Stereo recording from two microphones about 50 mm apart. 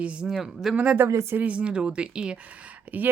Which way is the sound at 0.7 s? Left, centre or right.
Right.